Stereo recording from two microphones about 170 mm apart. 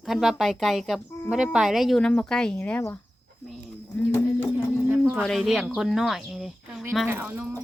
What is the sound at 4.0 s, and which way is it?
Clip-clop, 15° left (ahead or behind).